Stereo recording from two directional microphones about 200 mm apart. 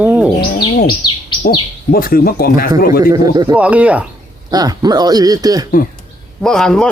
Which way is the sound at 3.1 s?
20° right (ahead or behind).